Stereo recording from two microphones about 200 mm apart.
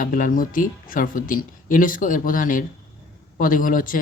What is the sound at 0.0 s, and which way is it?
Speech, 40° left (ahead or behind).